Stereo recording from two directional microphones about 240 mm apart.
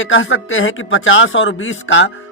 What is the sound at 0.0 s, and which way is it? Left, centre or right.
A man's voice, left.